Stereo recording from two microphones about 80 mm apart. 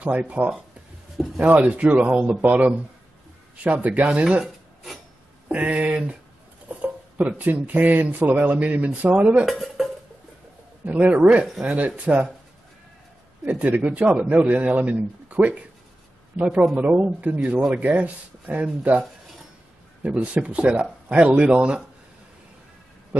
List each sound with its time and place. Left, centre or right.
0.0 s speech: centre
1.1 s speech: centre
1.4 s speech: centre
5.5 s speech: centre
9.5 s dishes: centre
10.9 s speech: centre
13.5 s speech: centre